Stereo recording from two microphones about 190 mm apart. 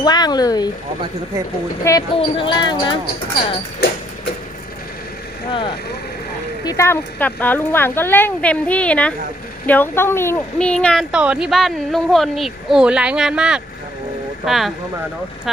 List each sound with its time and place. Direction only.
0.0 s speech: 20° left (ahead or behind)
1.8 s speech: 15° left (ahead or behind)
2.1 s speech: 25° left (ahead or behind)
3.8 s speech: 60° left (ahead or behind)
5.5 s speech: 25° left (ahead or behind)
6.7 s a woman's voice: 15° left (ahead or behind); by 14.7 s centre (ahead or behind)